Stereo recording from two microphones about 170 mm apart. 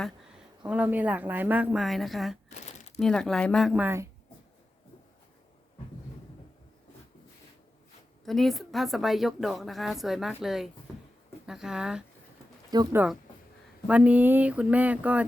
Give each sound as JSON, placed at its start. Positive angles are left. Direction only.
{"t": 0.6, "sound": "speech", "side_deg": -10}
{"t": 2.5, "sound": "crumpling", "side_deg": 40}
{"t": 3.0, "sound": "a woman's voice", "side_deg": 5}
{"t": 8.2, "sound": "a woman's voice", "side_deg": 0}
{"t": 12.7, "sound": "speech", "side_deg": -25}
{"t": 13.8, "sound": "speech", "side_deg": -10}